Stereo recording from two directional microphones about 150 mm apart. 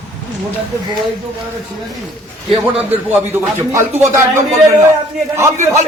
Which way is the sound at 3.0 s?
15° right (ahead or behind).